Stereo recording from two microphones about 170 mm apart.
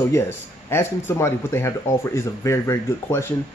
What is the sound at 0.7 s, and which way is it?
Speech, 15° left (ahead or behind).